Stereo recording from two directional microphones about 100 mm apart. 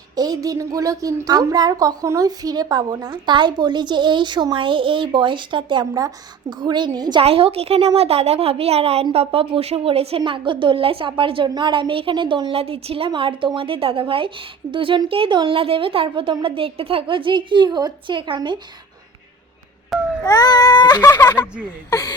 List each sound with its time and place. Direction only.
0.2 s a woman's voice: 40° right (ahead or behind); by 5.8 s 55° right (ahead or behind)
5.8 s a woman's voice: 35° right (ahead or behind)
6.6 s a woman's voice: 50° right (ahead or behind)
7.2 s a woman's voice: 70° right (ahead or behind); by 9.0 s 90° right
9.1 s a woman's voice: 70° right (ahead or behind)
11.4 s a woman's voice: 50° right (ahead or behind)
19.9 s baby cry: centre (ahead or behind)
20.2 s a sound: 40° left (ahead or behind)
21.8 s speech: 35° left (ahead or behind)